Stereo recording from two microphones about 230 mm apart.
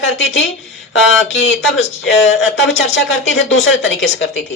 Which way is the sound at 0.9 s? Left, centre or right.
Left.